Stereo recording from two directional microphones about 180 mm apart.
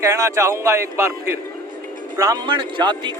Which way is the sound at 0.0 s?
15° right (ahead or behind).